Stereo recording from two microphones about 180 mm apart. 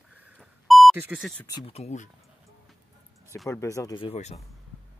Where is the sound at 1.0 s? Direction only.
10° right (ahead or behind).